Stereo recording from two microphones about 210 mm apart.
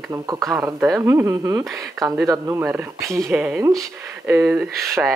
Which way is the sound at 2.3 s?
15° right (ahead or behind).